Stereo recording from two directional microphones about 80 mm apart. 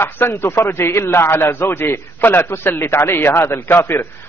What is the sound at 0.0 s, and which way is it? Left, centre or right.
A man's voice, left.